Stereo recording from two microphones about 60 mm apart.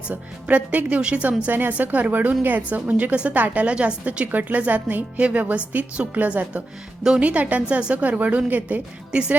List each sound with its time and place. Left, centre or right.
0.4 s a woman's voice: right
1.5 s a woman's voice: right; by 4.3 s centre
4.3 s a woman's voice: right